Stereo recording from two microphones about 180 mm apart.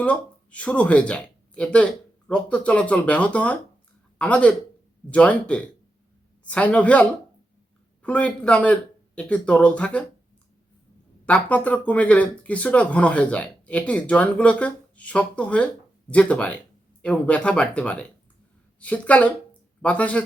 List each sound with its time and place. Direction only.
0.0 s speech: 5° left (ahead or behind)
11.3 s speech: 5° left (ahead or behind)